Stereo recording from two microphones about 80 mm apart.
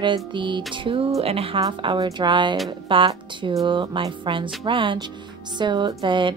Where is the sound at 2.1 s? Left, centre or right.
Right.